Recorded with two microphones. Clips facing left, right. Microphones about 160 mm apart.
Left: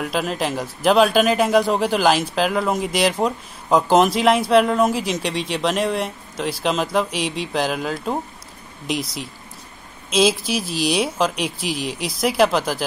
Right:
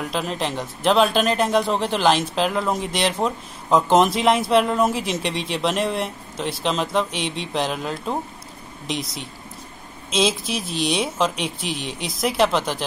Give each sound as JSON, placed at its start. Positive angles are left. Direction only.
{"t": 0.0, "sound": "speech", "side_deg": 5}